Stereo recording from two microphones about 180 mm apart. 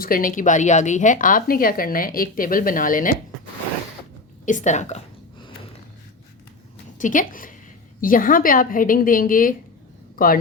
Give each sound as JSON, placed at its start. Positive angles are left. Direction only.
{"t": 0.0, "sound": "a woman's voice", "side_deg": 50}
{"t": 4.4, "sound": "a woman's voice", "side_deg": 45}
{"t": 7.0, "sound": "a woman's voice", "side_deg": 45}